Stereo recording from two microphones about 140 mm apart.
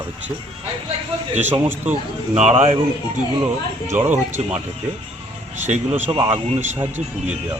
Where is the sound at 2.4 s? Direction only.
45° right (ahead or behind).